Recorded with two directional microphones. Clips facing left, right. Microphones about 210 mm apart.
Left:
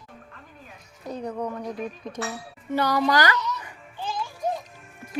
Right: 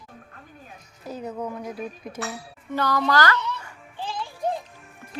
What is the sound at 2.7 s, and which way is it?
Speech, 15° left (ahead or behind).